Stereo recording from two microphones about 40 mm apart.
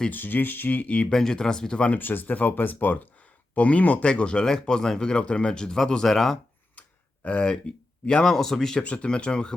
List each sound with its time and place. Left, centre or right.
0.1 s speech: left
0.8 s speech: left
1.1 s speech: centre
2.0 s speech: left
2.3 s speech: left
3.5 s speech: left
4.0 s speech: left; by 6.4 s centre
7.3 s speech: left
8.0 s speech: centre
8.8 s speech: left